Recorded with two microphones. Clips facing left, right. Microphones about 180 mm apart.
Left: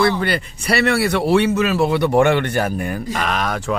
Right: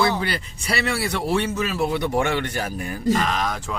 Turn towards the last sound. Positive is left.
turn(degrees=65)  # may be behind; listen again after turning